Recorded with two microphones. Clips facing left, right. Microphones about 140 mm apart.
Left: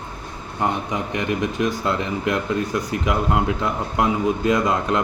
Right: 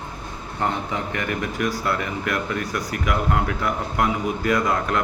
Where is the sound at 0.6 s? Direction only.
20° left (ahead or behind).